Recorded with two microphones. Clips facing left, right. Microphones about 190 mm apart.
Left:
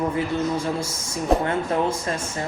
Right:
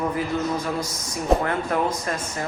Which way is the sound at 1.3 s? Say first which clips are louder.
Even; centre (ahead or behind).